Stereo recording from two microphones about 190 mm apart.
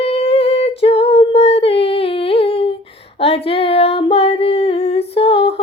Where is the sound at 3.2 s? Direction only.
30° left (ahead or behind).